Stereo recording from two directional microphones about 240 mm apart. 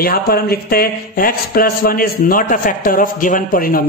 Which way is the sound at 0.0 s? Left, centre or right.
Left.